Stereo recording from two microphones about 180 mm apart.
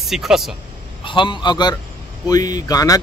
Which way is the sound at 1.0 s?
25° left (ahead or behind).